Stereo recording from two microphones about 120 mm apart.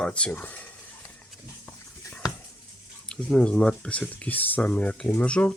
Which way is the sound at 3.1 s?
5° left (ahead or behind).